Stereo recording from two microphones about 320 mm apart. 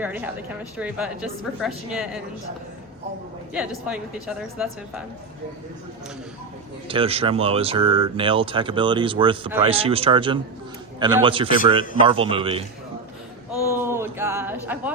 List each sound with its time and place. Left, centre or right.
0.8 s a woman's voice: centre
3.5 s a woman's voice: centre
6.8 s speech: centre
13.7 s speech: centre